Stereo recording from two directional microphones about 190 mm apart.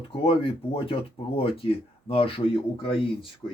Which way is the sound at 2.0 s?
30° left (ahead or behind).